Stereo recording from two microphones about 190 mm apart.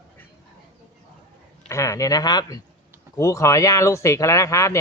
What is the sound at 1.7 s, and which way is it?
Speech, 15° left (ahead or behind).